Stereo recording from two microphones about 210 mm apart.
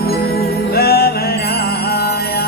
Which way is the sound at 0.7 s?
50° left (ahead or behind).